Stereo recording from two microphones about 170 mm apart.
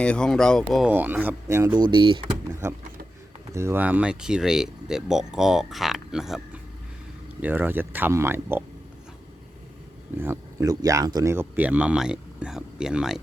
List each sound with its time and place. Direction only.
0.0 s speech: 5° left (ahead or behind); by 1.8 s 20° right (ahead or behind)
1.9 s speech: 30° right (ahead or behind)
3.5 s speech: 15° right (ahead or behind)
10.2 s speech: 15° right (ahead or behind)